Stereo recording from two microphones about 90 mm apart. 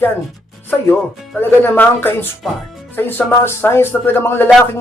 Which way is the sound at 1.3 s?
25° left (ahead or behind).